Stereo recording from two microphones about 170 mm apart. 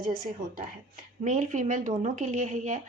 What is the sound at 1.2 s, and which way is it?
Speech, 45° right (ahead or behind).